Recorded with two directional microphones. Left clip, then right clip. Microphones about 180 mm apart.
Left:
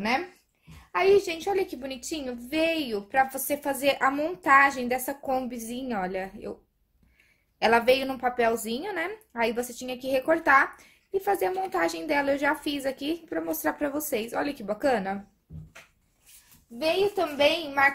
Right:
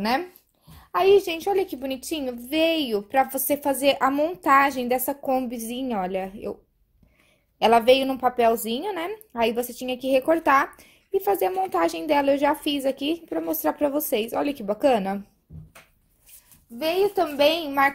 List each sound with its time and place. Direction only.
0.9 s a woman's voice: 40° right (ahead or behind)
7.5 s a woman's voice: 30° right (ahead or behind)
16.7 s a woman's voice: 40° right (ahead or behind)